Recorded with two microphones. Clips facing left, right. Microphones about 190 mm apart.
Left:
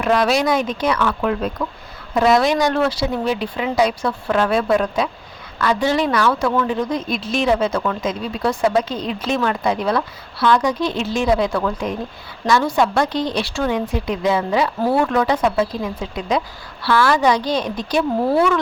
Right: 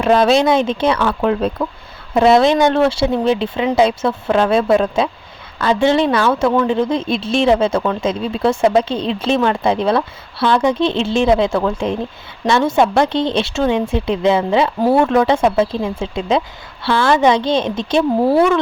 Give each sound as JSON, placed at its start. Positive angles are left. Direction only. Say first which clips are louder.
{"t": 0.0, "sound": "speech", "louder": "right 5 dB", "side_deg": -25}